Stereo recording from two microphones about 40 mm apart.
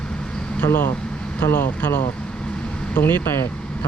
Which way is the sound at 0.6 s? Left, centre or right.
Left.